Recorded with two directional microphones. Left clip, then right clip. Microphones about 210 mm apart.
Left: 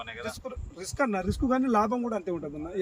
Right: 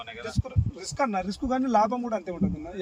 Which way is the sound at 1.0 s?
10° right (ahead or behind).